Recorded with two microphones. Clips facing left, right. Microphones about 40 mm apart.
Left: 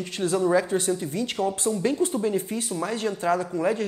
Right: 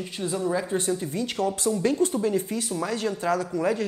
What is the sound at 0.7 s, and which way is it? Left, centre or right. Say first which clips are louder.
Speech: left 2 dB; left.